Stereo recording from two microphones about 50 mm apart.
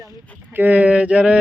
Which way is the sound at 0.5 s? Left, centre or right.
Right.